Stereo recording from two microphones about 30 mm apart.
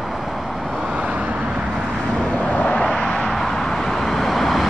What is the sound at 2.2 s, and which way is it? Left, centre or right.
Vehicle, left.